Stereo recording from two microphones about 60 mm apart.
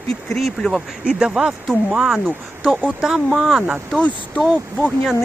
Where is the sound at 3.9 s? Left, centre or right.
Centre.